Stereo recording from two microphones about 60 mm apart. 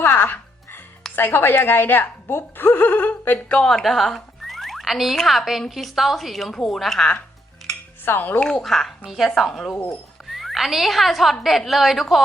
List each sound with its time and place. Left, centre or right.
0.0 s music: left
1.1 s a woman's voice: left
3.3 s a woman's voice: centre
8.0 s a woman's voice: left
8.4 s a woman's voice: centre